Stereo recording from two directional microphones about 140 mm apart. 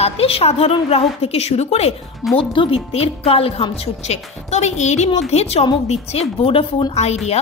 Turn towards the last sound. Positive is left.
turn(degrees=45)  # may be behind; listen again after turning